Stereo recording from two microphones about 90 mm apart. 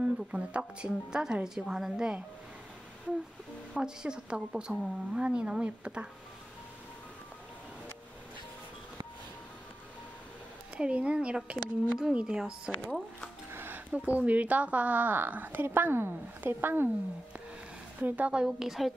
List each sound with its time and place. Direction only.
0.0 s a woman's voice: 15° right (ahead or behind)
3.7 s a woman's voice: 10° right (ahead or behind)
10.8 s a woman's voice: 15° right (ahead or behind)
13.5 s a sound: 25° right (ahead or behind)
14.2 s a woman's voice: 15° right (ahead or behind)
18.0 s a woman's voice: 15° right (ahead or behind)